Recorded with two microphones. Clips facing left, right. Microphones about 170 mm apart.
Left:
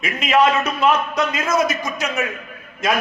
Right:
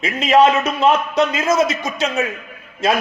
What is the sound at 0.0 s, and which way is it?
A man's voice, 30° right (ahead or behind).